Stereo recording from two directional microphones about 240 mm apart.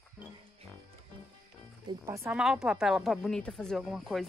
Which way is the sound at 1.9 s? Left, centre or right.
Centre.